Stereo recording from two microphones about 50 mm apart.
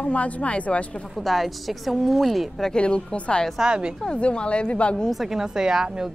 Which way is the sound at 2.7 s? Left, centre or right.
Centre.